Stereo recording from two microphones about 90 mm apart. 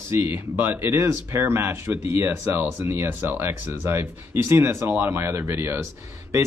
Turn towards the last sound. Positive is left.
turn(degrees=-35)  # may be behind; listen again after turning